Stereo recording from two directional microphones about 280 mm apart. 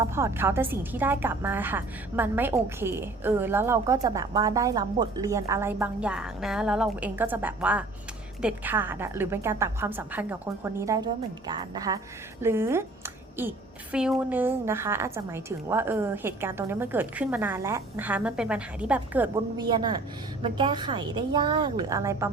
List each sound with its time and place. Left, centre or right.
0.0 s a woman's voice: centre
13.9 s a woman's voice: centre